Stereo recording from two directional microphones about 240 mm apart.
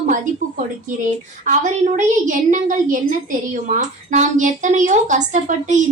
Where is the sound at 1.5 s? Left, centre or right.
Right.